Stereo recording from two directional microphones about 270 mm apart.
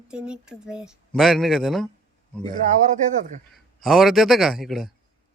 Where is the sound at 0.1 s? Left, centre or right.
Centre.